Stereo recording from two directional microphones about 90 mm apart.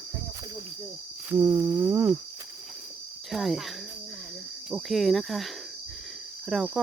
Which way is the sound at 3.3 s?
Centre (ahead or behind).